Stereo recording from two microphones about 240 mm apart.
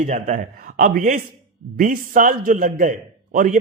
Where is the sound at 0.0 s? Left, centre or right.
Right.